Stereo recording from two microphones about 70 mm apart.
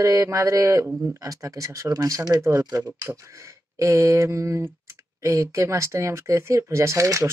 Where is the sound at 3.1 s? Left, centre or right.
Right.